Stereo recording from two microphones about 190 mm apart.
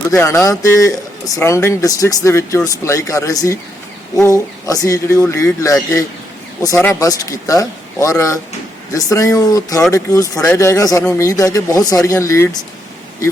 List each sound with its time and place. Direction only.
0.1 s speech: 15° left (ahead or behind)